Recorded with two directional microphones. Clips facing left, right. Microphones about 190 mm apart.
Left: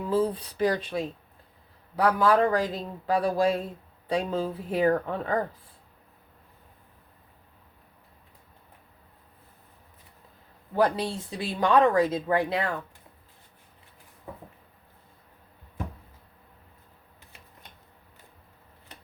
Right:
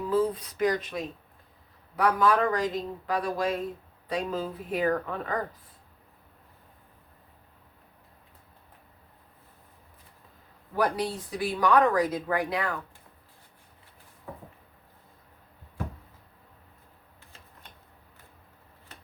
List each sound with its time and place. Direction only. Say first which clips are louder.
0.1 s speech: left 1 dB; 30° left (ahead or behind)
10.8 s speech: left 3 dB; 25° left (ahead or behind)